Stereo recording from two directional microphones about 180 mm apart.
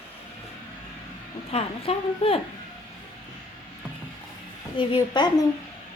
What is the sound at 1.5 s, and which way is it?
Speech, 35° left (ahead or behind).